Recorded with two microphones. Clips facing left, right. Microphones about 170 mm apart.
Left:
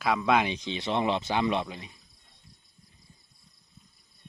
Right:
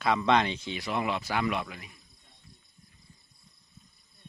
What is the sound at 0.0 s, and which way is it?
Speech, centre (ahead or behind).